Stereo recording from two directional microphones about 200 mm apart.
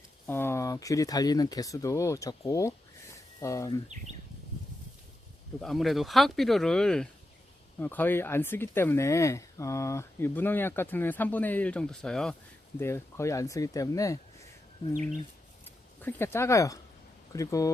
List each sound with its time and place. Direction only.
0.3 s speech: 10° left (ahead or behind)
5.6 s speech: centre (ahead or behind)
12.8 s speech: 15° left (ahead or behind)
15.6 s a sound: 10° left (ahead or behind)
17.3 s speech: 15° left (ahead or behind)